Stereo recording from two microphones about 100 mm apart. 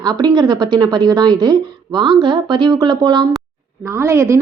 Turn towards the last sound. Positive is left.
turn(degrees=-30)  # may be behind; listen again after turning